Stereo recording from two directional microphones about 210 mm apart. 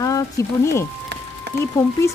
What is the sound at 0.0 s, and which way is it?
Speech, 15° left (ahead or behind).